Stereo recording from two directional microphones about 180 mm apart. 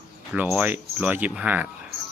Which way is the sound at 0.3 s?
10° right (ahead or behind).